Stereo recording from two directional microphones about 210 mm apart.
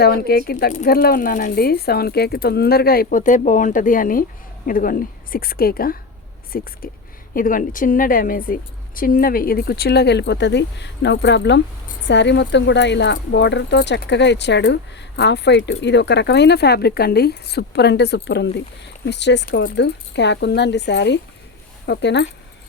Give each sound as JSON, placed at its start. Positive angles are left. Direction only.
{"t": 0.0, "sound": "a woman's voice", "side_deg": 50}